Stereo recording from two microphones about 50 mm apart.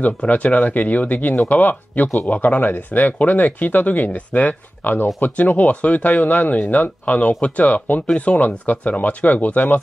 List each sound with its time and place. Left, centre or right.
0.0 s speech: left